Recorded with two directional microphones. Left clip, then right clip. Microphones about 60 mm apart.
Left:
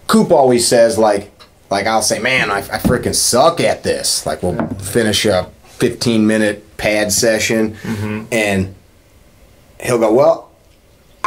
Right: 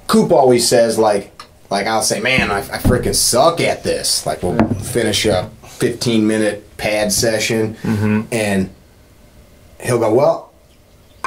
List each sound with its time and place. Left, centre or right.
0.0 s speech: left
7.8 s speech: right
8.3 s speech: left
9.8 s speech: left